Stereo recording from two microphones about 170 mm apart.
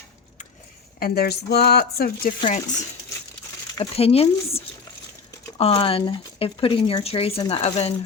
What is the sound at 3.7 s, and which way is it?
Speech, 35° left (ahead or behind).